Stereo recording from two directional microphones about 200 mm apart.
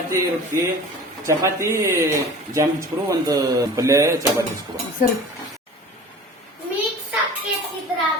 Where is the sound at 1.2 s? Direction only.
15° right (ahead or behind).